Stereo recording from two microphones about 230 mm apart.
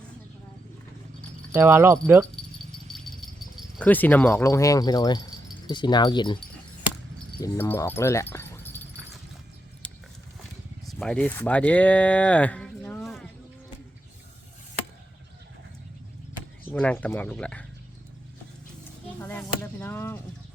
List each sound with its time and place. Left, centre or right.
1.5 s speech: centre
3.8 s speech: centre
7.4 s speech: centre
10.8 s speech: centre
16.7 s speech: centre
19.2 s speech: centre